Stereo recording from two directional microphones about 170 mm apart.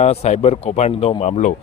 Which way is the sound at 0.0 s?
40° left (ahead or behind).